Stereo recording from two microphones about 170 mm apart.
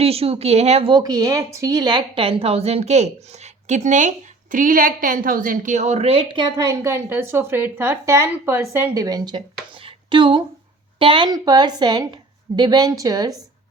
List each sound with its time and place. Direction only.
0.0 s a woman's voice: 35° right (ahead or behind)
9.8 s a sound: 30° right (ahead or behind)
11.0 s a woman's voice: 30° right (ahead or behind)